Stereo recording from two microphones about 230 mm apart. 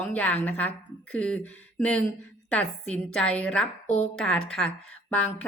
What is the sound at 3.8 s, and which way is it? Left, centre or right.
Speech, left.